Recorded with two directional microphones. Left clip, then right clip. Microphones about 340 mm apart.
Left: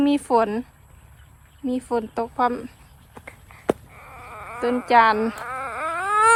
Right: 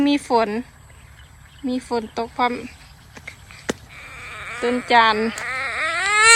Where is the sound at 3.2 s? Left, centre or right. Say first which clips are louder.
Left 4 dB; centre.